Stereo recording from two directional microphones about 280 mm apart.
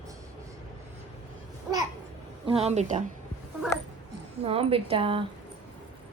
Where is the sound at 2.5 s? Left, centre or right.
Right.